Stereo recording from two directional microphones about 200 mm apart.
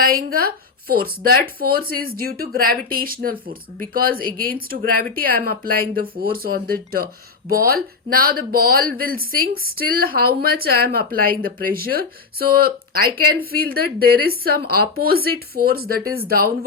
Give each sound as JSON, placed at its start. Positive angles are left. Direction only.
{"t": 0.0, "sound": "speech", "side_deg": -45}